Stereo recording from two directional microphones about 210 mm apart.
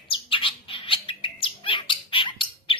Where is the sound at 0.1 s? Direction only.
25° left (ahead or behind).